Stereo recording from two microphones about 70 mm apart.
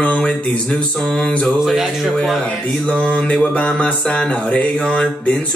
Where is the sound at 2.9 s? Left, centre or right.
Centre.